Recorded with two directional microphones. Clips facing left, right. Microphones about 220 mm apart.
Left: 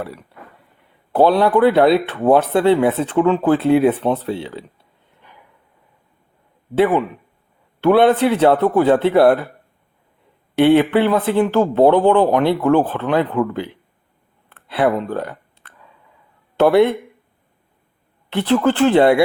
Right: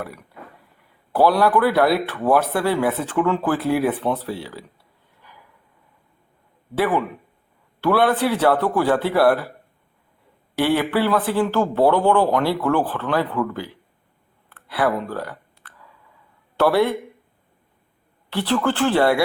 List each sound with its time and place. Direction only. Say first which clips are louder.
0.0 s speech: left 3 dB; 25° left (ahead or behind)
6.7 s speech: left 5 dB; 25° left (ahead or behind)
10.6 s speech: left 7 dB; 20° left (ahead or behind)
14.5 s a sound: left 4 dB; 25° left (ahead or behind)
16.6 s speech: left 5 dB; 20° left (ahead or behind)
18.3 s speech: left 5 dB; 20° left (ahead or behind)